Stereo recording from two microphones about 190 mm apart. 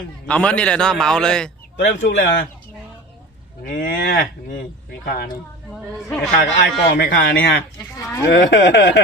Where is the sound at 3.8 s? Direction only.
60° left (ahead or behind).